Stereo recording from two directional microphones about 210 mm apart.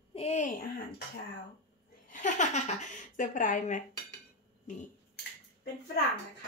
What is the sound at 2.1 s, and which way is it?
Speech, 35° left (ahead or behind).